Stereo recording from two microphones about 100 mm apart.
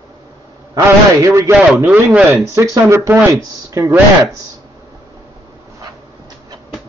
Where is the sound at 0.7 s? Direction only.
30° right (ahead or behind).